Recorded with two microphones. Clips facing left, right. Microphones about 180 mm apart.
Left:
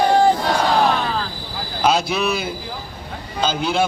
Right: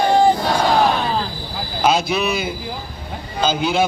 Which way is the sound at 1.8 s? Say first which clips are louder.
Right 1 dB; 5° right (ahead or behind).